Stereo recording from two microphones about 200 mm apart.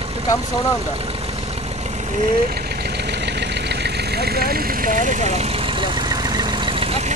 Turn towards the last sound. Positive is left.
turn(degrees=-30)  # may be behind; listen again after turning